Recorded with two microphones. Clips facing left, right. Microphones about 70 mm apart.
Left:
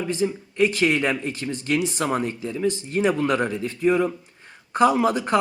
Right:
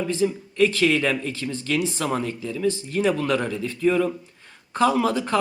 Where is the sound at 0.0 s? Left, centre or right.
Centre.